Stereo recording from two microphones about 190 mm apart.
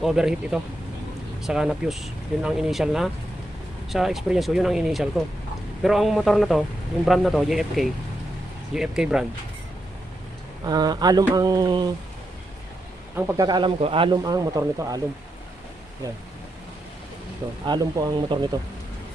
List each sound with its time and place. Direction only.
0.0 s speech: centre (ahead or behind)
10.7 s speech: 20° right (ahead or behind)
13.1 s speech: 15° right (ahead or behind)
17.7 s speech: 20° right (ahead or behind)